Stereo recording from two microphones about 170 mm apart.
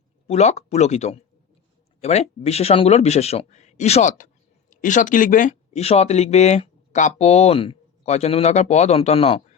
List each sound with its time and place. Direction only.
0.3 s speech: 40° left (ahead or behind)